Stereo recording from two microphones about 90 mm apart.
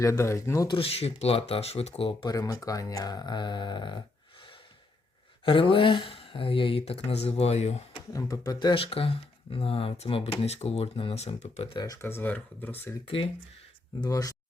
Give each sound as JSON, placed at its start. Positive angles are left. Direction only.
{"t": 0.0, "sound": "speech", "side_deg": 35}
{"t": 0.7, "sound": "speech", "side_deg": 90}
{"t": 2.2, "sound": "speech", "side_deg": 40}
{"t": 5.5, "sound": "speech", "side_deg": 75}
{"t": 8.1, "sound": "speech", "side_deg": 40}
{"t": 8.7, "sound": "speech", "side_deg": 90}
{"t": 11.9, "sound": "speech", "side_deg": 25}
{"t": 14.0, "sound": "speech", "side_deg": 40}